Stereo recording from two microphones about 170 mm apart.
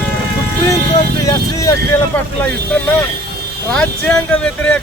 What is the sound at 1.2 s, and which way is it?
Speech, 20° left (ahead or behind).